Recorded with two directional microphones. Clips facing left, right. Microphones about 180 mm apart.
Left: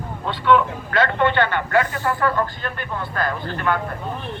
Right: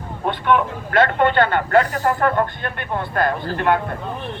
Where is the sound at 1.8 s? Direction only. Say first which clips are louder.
Right 3 dB; 40° right (ahead or behind).